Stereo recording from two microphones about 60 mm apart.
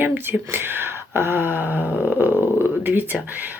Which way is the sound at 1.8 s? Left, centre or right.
Left.